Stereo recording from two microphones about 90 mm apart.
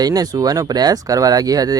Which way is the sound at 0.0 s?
45° right (ahead or behind).